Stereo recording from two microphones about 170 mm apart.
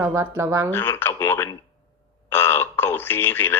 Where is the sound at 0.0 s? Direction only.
15° right (ahead or behind).